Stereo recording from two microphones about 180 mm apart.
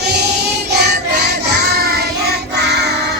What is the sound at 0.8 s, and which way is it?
Child singing, 65° right (ahead or behind).